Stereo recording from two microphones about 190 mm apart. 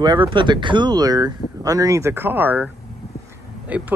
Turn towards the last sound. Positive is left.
turn(degrees=-10)  # may be behind; listen again after turning